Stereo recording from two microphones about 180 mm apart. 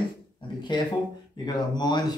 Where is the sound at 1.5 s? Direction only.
25° left (ahead or behind).